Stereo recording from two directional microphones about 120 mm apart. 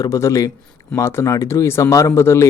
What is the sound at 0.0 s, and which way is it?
Speech, 25° left (ahead or behind).